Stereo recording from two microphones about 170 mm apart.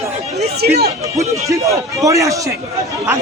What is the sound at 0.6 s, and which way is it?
Speech, 70° right (ahead or behind).